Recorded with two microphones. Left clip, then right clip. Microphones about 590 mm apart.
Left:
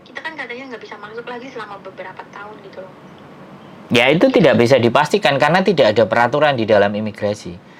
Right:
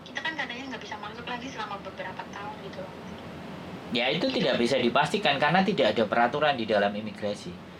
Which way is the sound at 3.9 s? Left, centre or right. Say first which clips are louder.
Left 14 dB; left.